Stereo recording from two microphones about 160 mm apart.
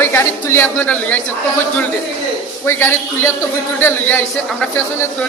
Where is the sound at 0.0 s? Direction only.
15° left (ahead or behind).